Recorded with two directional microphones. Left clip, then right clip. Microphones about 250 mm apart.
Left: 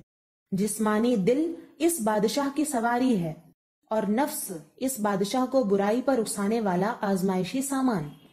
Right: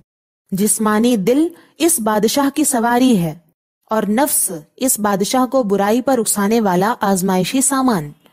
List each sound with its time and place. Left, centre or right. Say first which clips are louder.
0.6 s a woman's voice: right 10 dB; right